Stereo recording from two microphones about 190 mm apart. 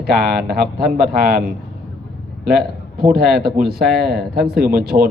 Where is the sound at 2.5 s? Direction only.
55° right (ahead or behind).